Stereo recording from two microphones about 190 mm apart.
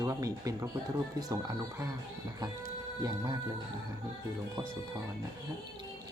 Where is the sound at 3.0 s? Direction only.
20° right (ahead or behind).